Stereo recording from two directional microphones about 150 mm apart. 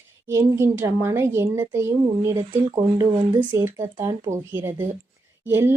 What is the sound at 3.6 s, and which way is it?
A woman's voice, 20° right (ahead or behind).